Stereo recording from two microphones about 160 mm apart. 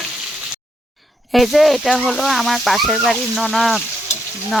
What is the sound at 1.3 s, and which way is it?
Speech, centre (ahead or behind).